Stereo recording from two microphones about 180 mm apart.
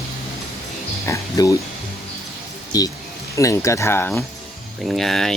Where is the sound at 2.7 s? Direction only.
20° left (ahead or behind).